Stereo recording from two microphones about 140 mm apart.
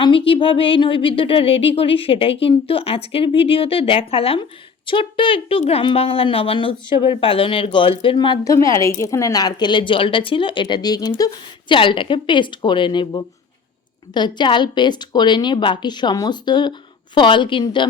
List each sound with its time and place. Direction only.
0.0 s speech: 40° left (ahead or behind)
8.5 s a woman's voice: 20° left (ahead or behind)